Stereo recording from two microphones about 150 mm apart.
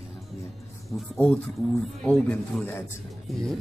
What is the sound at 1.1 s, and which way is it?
A man's voice, 10° left (ahead or behind).